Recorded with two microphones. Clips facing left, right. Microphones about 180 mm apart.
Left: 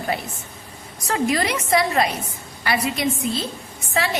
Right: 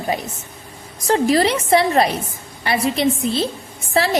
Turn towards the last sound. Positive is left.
turn(degrees=-35)  # may be behind; listen again after turning